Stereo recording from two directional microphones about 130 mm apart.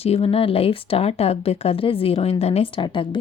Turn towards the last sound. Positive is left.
turn(degrees=40)  # may be behind; listen again after turning